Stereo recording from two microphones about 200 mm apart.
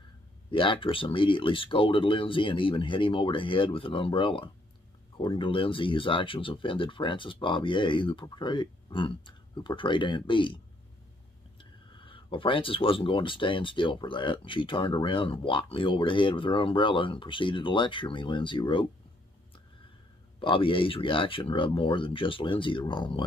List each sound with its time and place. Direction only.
0.5 s speech: 25° left (ahead or behind)
11.9 s speech: 25° left (ahead or behind)
20.3 s speech: 25° left (ahead or behind)